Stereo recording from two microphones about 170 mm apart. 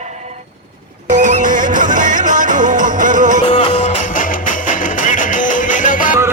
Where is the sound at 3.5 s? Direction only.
45° left (ahead or behind).